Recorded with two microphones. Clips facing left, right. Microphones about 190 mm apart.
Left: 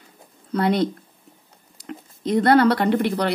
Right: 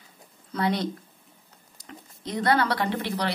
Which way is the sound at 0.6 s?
55° left (ahead or behind).